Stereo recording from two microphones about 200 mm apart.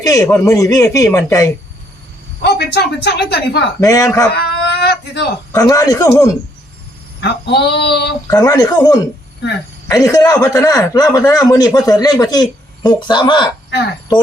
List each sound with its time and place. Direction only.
0.0 s speech: 15° left (ahead or behind)
2.4 s speech: 55° left (ahead or behind)
3.8 s speech: 15° left (ahead or behind)
4.3 s a sound: 55° left (ahead or behind)
5.5 s speech: 15° left (ahead or behind)
7.2 s speech: 55° left (ahead or behind)
8.3 s speech: 20° left (ahead or behind)